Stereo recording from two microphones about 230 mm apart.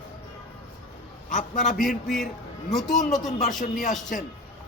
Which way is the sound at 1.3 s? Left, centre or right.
Left.